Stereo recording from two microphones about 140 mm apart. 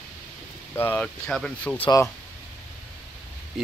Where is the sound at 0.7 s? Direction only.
15° left (ahead or behind).